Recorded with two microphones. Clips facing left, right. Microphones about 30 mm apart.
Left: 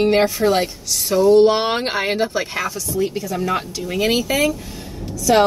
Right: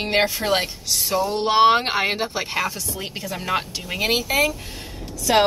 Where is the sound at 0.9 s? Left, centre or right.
Centre.